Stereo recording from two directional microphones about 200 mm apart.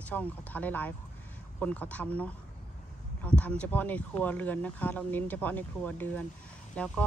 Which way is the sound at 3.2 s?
5° left (ahead or behind).